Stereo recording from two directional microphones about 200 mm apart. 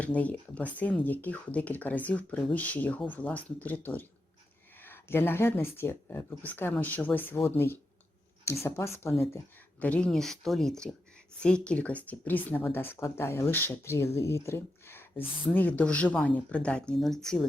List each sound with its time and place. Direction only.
0.0 s speech: 5° left (ahead or behind)